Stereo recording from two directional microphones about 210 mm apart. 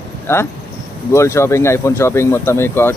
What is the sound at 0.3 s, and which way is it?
Speech, 10° left (ahead or behind).